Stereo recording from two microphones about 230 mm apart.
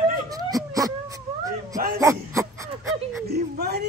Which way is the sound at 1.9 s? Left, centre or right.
Centre.